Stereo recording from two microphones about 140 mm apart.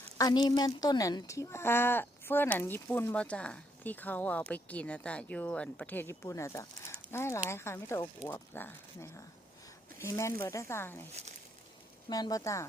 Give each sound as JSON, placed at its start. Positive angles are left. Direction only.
{"t": 0.2, "sound": "speech", "side_deg": 30}
{"t": 12.0, "sound": "speech", "side_deg": 30}